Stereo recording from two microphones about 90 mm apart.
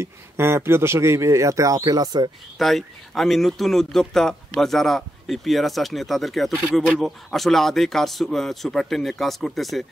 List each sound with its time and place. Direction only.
0.0 s speech: 30° right (ahead or behind); by 2.3 s 50° right (ahead or behind)
2.6 s speech: centre (ahead or behind)